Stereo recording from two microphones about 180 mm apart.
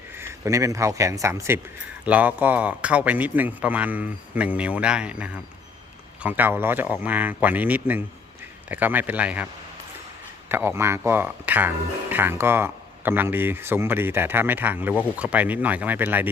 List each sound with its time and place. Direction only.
0.2 s speech: 15° right (ahead or behind)
10.5 s speech: 10° right (ahead or behind)